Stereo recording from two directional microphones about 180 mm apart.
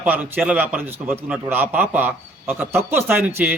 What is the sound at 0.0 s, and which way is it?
A man's voice, 10° right (ahead or behind).